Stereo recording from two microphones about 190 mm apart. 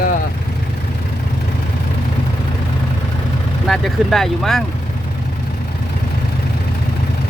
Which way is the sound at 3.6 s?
Centre (ahead or behind).